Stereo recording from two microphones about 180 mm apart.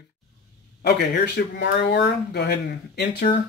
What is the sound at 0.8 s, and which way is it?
Speech, 65° left (ahead or behind).